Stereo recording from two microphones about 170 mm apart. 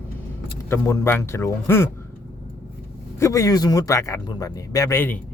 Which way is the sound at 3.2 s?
20° left (ahead or behind).